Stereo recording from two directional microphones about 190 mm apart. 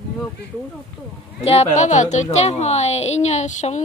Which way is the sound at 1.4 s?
30° left (ahead or behind).